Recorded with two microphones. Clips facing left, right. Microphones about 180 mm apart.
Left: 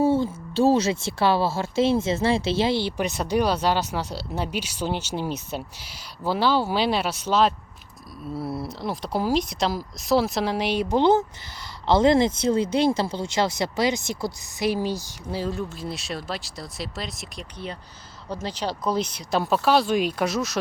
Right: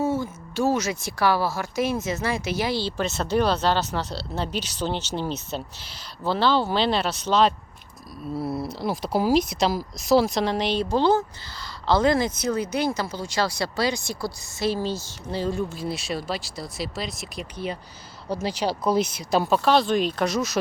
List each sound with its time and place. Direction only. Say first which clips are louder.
0.0 s speech: left 4 dB; 30° left (ahead or behind); by 20.6 s centre (ahead or behind)